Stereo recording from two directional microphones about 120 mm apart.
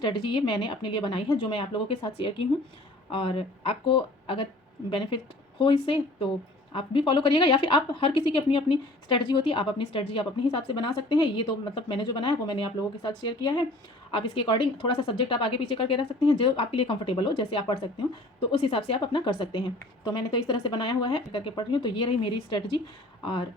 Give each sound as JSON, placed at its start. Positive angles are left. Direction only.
{"t": 0.0, "sound": "a woman's voice", "side_deg": 45}